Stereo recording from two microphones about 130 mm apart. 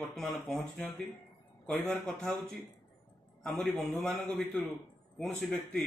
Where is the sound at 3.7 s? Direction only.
20° right (ahead or behind).